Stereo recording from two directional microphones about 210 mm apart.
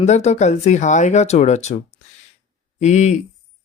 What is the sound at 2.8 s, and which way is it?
Speech, 35° left (ahead or behind).